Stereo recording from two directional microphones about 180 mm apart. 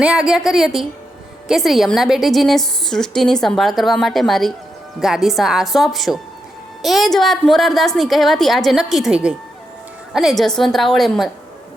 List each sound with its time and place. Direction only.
0.0 s a woman's voice: 5° right (ahead or behind)